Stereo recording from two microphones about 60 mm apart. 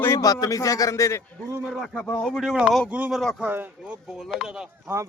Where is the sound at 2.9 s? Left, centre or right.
Right.